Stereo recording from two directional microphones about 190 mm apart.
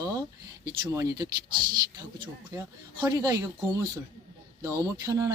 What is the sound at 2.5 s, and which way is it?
Speech, 20° right (ahead or behind).